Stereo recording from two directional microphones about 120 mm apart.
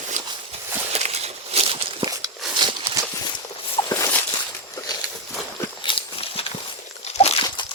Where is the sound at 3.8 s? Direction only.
40° left (ahead or behind).